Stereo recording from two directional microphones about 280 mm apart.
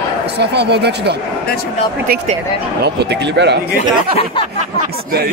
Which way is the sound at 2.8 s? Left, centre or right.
Right.